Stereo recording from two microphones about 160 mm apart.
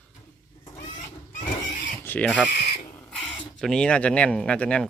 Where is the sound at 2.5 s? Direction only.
90° left.